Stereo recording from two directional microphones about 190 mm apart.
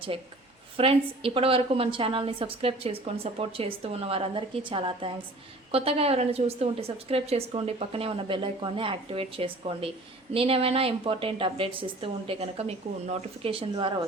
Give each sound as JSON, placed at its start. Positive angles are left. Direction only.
{"t": 0.8, "sound": "a woman's voice", "side_deg": -30}